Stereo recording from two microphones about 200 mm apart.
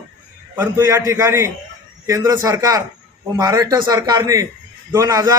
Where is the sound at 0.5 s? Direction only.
10° right (ahead or behind).